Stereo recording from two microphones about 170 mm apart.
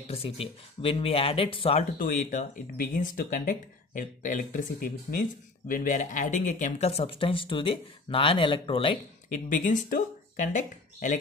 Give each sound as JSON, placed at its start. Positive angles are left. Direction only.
{"t": 0.1, "sound": "speech", "side_deg": 35}
{"t": 2.0, "sound": "speech", "side_deg": 50}
{"t": 9.5, "sound": "speech", "side_deg": 50}